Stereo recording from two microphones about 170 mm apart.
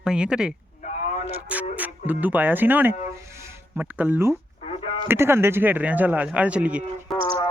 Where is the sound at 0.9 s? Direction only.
45° left (ahead or behind).